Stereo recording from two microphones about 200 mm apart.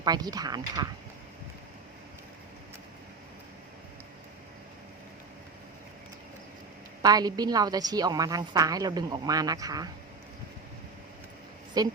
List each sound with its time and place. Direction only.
0.0 s a woman's voice: 20° right (ahead or behind)
7.0 s a woman's voice: 20° right (ahead or behind)
11.8 s a woman's voice: 20° right (ahead or behind)